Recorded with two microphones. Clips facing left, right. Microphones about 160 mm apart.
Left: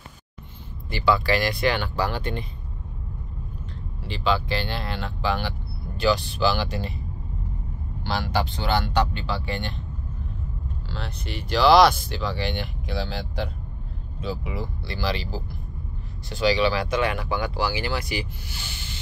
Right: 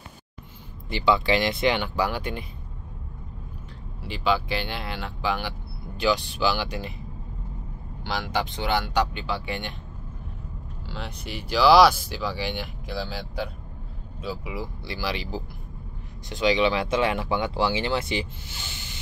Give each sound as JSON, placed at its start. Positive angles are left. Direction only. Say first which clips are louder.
{"t": 0.8, "sound": "speech", "louder": "even", "side_deg": -20}
{"t": 4.0, "sound": "speech", "louder": "even", "side_deg": -10}
{"t": 8.0, "sound": "speech", "louder": "left 2 dB", "side_deg": -15}
{"t": 10.9, "sound": "speech", "louder": "even", "side_deg": -15}